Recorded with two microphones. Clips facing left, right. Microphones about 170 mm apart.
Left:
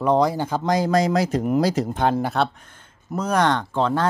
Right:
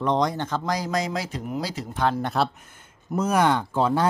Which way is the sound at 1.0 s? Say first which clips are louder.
Left 8 dB; 40° left (ahead or behind).